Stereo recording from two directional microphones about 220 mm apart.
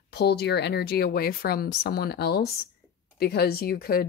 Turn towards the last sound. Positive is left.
turn(degrees=45)  # may be behind; listen again after turning